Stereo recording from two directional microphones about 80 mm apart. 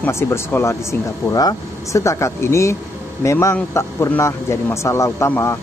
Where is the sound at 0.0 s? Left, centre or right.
Left.